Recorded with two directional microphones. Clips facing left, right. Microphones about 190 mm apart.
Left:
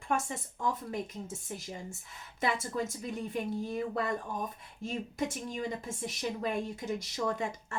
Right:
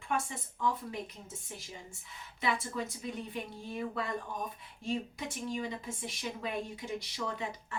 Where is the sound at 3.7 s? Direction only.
45° left (ahead or behind).